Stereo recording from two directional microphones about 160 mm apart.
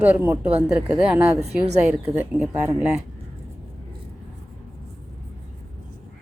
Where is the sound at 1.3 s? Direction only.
45° right (ahead or behind).